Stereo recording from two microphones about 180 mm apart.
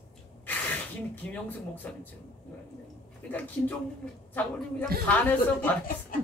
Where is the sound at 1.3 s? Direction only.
10° left (ahead or behind).